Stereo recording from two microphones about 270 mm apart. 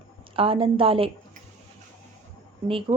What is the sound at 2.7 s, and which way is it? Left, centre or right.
Speech, centre.